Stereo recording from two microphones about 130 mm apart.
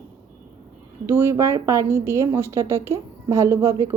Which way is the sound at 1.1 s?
20° right (ahead or behind).